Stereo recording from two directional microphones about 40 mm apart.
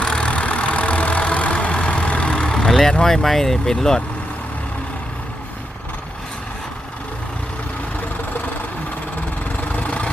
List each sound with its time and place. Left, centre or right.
0.0 s vehicle: left
1.7 s vehicle: left
2.0 s vehicle: left
2.4 s vehicle: centre
2.6 s speech: centre
3.2 s speech: centre
9.7 s vehicle: left